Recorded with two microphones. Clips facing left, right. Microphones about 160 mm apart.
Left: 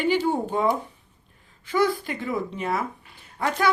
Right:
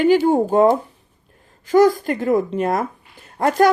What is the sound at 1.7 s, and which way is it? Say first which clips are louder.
Speech: right 9 dB; 40° right (ahead or behind).